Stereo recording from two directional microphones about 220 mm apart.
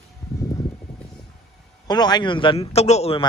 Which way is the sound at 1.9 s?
20° left (ahead or behind).